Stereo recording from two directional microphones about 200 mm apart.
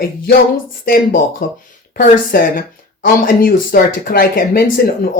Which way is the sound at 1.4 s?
40° left (ahead or behind).